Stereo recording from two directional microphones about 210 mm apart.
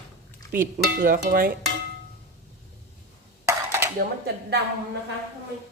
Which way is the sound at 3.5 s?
10° right (ahead or behind).